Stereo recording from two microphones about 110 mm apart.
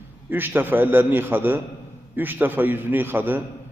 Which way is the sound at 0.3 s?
20° right (ahead or behind).